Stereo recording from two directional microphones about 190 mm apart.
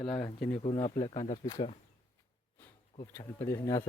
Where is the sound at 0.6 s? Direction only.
30° left (ahead or behind).